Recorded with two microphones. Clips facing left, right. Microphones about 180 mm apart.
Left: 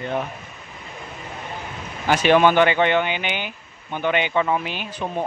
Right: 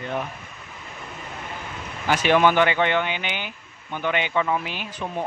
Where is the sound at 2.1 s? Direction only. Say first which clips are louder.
Left 3 dB; 30° left (ahead or behind).